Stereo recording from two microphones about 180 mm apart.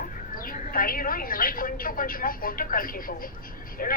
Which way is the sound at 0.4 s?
50° left (ahead or behind).